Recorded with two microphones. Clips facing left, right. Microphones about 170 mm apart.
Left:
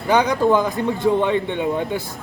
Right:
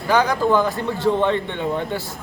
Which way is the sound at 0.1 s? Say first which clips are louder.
Left 1 dB; 20° left (ahead or behind).